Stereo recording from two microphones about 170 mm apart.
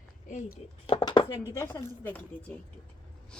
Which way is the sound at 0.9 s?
30° left (ahead or behind).